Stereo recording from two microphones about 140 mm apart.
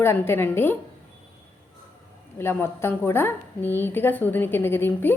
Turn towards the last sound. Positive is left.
turn(degrees=15)  # may be behind; listen again after turning